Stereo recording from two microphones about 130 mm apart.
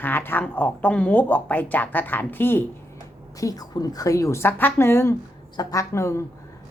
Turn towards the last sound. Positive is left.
turn(degrees=20)  # may be behind; listen again after turning